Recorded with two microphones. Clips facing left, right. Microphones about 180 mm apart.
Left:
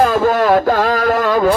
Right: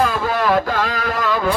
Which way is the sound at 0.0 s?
45° left (ahead or behind).